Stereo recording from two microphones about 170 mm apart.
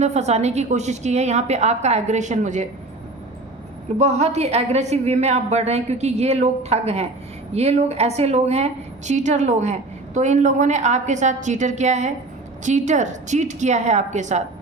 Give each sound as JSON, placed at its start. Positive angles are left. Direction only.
{"t": 0.0, "sound": "a woman's voice", "side_deg": -40}
{"t": 3.9, "sound": "a woman's voice", "side_deg": -40}